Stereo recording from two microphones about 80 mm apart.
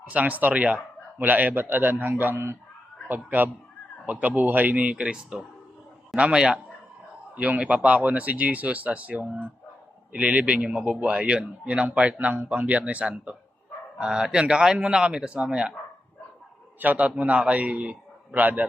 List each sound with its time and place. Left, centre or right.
0.1 s a man's voice: centre
16.8 s a man's voice: right